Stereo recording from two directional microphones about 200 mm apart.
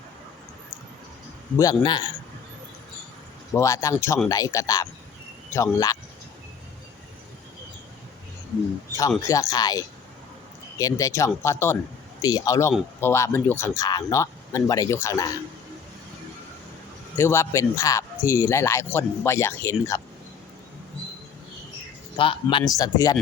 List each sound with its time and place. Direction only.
1.5 s a man's voice: 20° left (ahead or behind)
3.5 s speech: 15° left (ahead or behind)
9.0 s speech: 15° left (ahead or behind)
17.2 s speech: 15° left (ahead or behind)
22.2 s a man's voice: 25° left (ahead or behind)